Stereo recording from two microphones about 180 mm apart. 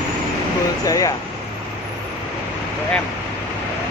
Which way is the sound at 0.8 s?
20° left (ahead or behind).